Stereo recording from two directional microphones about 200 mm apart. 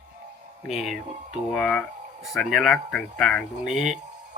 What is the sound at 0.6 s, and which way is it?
Speech, centre (ahead or behind).